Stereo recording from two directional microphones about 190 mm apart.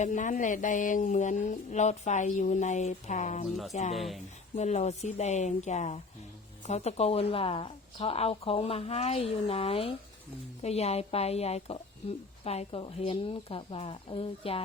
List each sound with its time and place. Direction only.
0.0 s speech: 40° left (ahead or behind)
3.9 s speech: centre (ahead or behind)
4.5 s a woman's voice: 35° left (ahead or behind)